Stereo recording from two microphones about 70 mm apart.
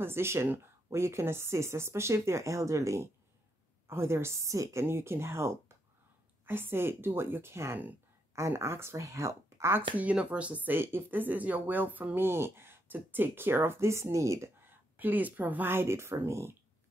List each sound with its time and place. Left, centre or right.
0.0 s speech: right
3.8 s speech: right
9.8 s speech: right
12.3 s speech: right
14.6 s speech: right